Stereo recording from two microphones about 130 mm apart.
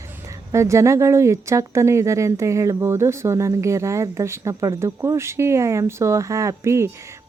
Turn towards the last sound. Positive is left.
turn(degrees=-20)  # may be behind; listen again after turning